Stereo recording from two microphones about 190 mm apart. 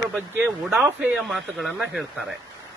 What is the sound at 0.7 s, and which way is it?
Speech, 5° right (ahead or behind).